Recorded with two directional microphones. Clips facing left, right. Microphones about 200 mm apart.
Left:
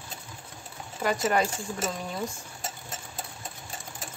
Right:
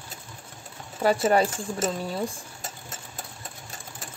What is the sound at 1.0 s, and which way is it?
Speech, 30° right (ahead or behind).